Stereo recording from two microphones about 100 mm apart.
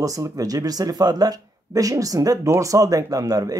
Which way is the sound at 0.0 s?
35° right (ahead or behind).